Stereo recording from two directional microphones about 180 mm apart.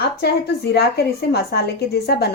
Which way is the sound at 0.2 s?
65° left (ahead or behind).